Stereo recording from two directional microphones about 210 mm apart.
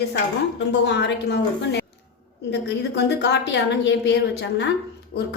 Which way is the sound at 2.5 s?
55° left (ahead or behind).